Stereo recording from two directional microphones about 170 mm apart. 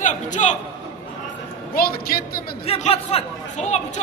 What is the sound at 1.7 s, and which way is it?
Speech, 60° left (ahead or behind).